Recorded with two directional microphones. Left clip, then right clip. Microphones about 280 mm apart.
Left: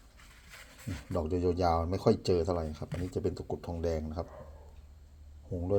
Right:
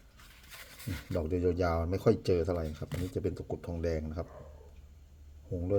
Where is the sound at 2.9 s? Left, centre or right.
Right.